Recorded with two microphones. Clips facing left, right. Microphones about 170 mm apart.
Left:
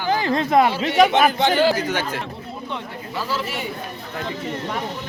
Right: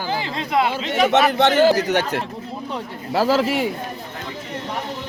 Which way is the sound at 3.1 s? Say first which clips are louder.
Right 9 dB; 90° right.